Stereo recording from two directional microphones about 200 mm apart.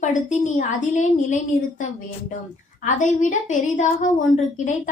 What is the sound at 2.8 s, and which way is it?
A woman's voice, 40° left (ahead or behind).